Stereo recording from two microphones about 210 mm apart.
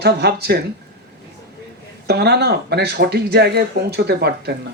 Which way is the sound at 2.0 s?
50° right (ahead or behind).